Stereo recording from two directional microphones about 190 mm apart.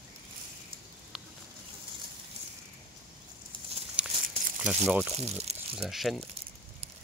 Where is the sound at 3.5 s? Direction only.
25° right (ahead or behind).